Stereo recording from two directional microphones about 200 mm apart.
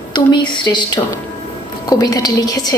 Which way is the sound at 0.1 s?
20° left (ahead or behind).